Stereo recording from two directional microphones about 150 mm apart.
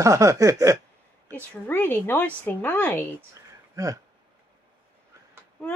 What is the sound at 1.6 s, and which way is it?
Speech, 10° left (ahead or behind).